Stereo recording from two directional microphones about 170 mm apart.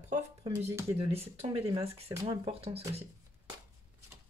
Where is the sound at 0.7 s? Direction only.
15° right (ahead or behind).